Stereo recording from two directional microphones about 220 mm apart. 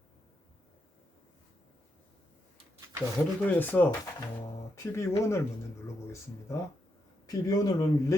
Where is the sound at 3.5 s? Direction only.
10° left (ahead or behind).